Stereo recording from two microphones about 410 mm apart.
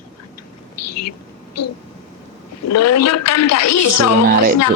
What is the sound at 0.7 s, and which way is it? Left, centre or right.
Speech, left.